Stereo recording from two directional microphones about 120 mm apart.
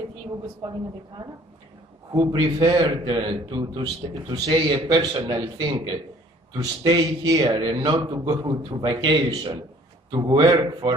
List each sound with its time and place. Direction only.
2.1 s a man's voice: 40° right (ahead or behind)